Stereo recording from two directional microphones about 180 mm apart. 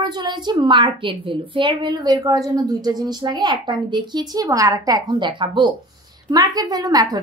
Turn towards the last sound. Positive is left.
turn(degrees=-20)  # may be behind; listen again after turning